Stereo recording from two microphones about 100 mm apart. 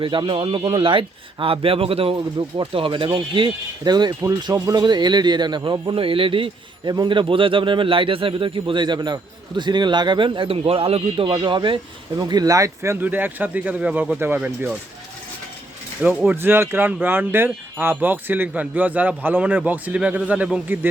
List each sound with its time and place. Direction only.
0.0 s speech: 55° right (ahead or behind); by 2.1 s 70° right (ahead or behind)
2.6 s speech: 60° right (ahead or behind)
5.9 s speech: 60° right (ahead or behind)
6.9 s speech: 50° right (ahead or behind); by 11.3 s 70° right (ahead or behind)
11.3 s speech: 50° right (ahead or behind); by 14.8 s 15° right (ahead or behind)
16.0 s speech: 20° right (ahead or behind)